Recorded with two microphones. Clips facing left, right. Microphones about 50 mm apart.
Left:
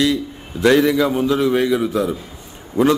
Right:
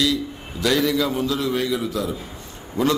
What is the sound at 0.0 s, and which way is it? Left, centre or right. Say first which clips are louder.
A man's voice: left 4 dB; left.